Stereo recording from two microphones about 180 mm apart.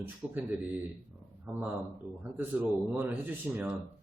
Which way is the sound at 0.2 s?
20° left (ahead or behind).